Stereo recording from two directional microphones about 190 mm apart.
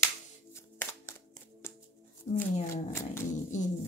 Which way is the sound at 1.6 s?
15° left (ahead or behind).